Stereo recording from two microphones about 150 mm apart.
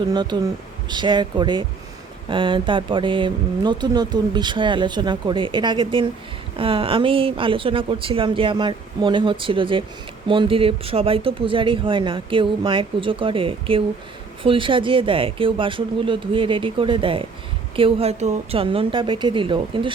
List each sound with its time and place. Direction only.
0.1 s speech: 30° right (ahead or behind)